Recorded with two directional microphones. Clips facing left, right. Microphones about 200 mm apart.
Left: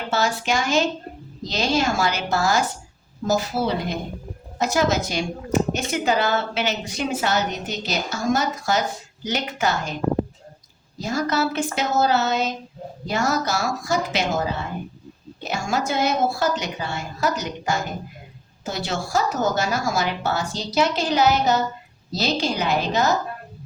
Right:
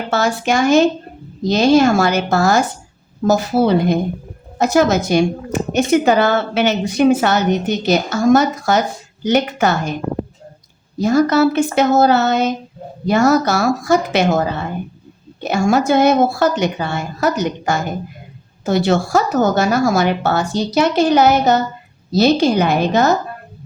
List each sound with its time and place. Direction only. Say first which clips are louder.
0.1 s a woman's voice: right 6 dB; 55° right (ahead or behind)
10.9 s a woman's voice: right 10 dB; 60° right (ahead or behind)